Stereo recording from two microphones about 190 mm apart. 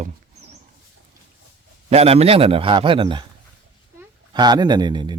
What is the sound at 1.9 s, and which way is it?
A man's voice, 35° right (ahead or behind).